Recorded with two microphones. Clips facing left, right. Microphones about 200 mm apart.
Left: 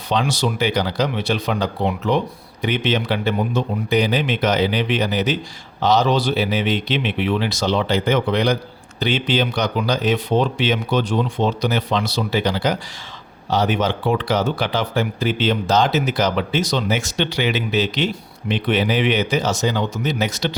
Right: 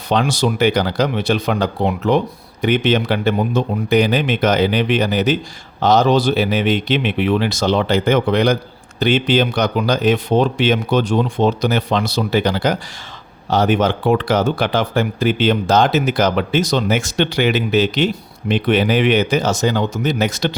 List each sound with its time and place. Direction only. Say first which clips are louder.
0.1 s speech: right 3 dB; 50° right (ahead or behind)